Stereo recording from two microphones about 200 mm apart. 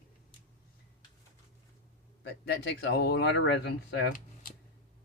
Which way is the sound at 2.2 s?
55° left (ahead or behind).